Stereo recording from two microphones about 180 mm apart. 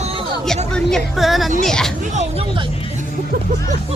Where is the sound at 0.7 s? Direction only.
5° left (ahead or behind).